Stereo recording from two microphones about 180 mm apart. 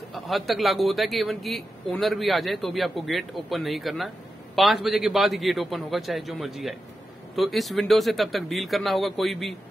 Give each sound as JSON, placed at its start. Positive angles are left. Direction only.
{"t": 0.1, "sound": "a man's voice", "side_deg": 0}